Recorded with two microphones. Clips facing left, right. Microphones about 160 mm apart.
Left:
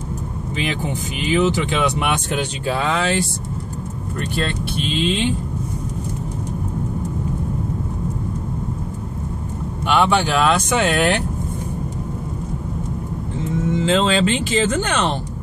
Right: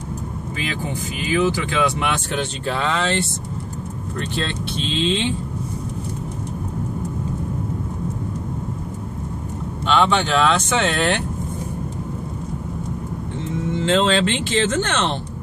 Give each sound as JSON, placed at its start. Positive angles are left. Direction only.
{"t": 1.2, "sound": "speech", "side_deg": 20}
{"t": 9.8, "sound": "speech", "side_deg": 10}
{"t": 13.7, "sound": "speech", "side_deg": 5}